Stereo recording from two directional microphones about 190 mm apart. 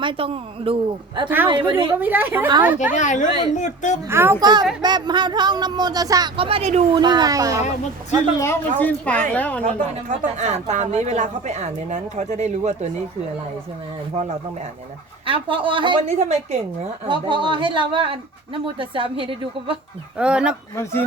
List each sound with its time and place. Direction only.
0.0 s speech: 25° right (ahead or behind)
2.0 s a woman's voice: 10° right (ahead or behind)
2.7 s a woman's voice: 40° left (ahead or behind)
4.1 s a woman's voice: 15° right (ahead or behind); by 6.8 s 35° right (ahead or behind)
6.9 s speech: 20° right (ahead or behind)
8.4 s a woman's voice: 10° left (ahead or behind)
10.3 s speech: 35° right (ahead or behind)
15.3 s speech: 25° right (ahead or behind)
16.0 s speech: 35° right (ahead or behind)
17.1 s speech: 25° right (ahead or behind)
20.1 s speech: 5° right (ahead or behind)